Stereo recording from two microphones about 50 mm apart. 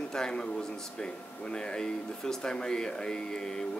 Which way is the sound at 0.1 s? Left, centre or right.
Centre.